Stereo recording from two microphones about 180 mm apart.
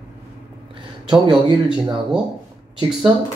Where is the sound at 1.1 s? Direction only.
25° right (ahead or behind).